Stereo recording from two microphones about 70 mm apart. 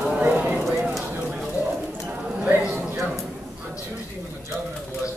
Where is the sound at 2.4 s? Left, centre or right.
Centre.